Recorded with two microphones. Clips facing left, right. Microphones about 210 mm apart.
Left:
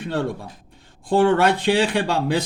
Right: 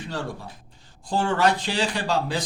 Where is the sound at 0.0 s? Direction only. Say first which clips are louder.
Left 7 dB; 55° left (ahead or behind).